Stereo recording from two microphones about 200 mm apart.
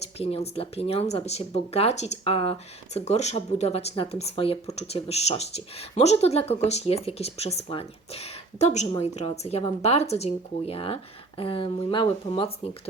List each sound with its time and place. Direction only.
0.0 s speech: 30° left (ahead or behind)